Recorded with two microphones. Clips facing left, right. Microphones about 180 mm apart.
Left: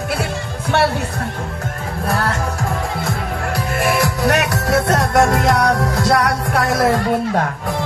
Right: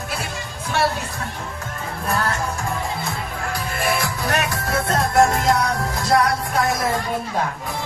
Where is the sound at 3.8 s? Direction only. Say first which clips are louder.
Left 6 dB; 70° left (ahead or behind).